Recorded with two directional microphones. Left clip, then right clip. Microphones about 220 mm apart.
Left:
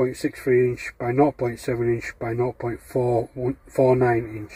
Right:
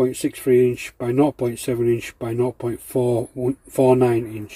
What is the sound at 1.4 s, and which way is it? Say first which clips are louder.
Speech: right 2 dB; 40° right (ahead or behind).